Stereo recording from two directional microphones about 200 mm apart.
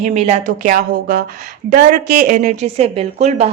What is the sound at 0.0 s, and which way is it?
Speech, 35° right (ahead or behind).